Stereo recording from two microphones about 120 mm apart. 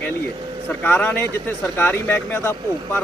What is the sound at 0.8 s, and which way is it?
Speech, 15° left (ahead or behind).